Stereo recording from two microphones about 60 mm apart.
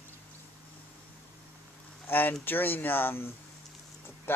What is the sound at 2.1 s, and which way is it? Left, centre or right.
Speech, left.